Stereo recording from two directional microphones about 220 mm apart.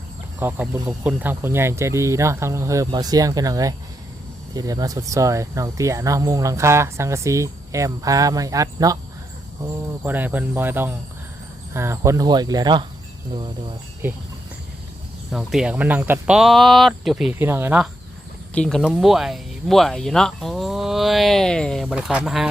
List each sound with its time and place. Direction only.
0.3 s speech: 10° right (ahead or behind)
10.0 s speech: 10° right (ahead or behind)
14.0 s speech: 10° right (ahead or behind)
15.3 s speech: 5° right (ahead or behind)
18.5 s speech: 5° left (ahead or behind)